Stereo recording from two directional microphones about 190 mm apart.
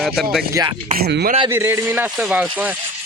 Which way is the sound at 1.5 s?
10° right (ahead or behind).